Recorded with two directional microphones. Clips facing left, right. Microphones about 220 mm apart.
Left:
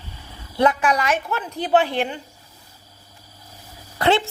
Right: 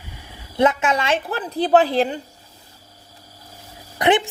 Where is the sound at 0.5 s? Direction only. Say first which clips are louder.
Right 1 dB; 20° right (ahead or behind).